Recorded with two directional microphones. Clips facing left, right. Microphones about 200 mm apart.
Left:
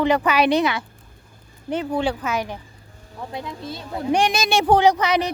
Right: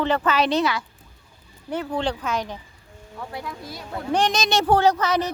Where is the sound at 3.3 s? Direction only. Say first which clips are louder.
Left 4 dB; 25° left (ahead or behind).